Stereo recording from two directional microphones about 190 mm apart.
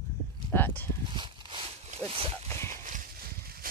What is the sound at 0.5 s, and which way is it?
Speech, 10° left (ahead or behind).